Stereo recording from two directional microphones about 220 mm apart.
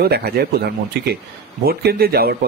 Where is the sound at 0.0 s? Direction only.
45° right (ahead or behind).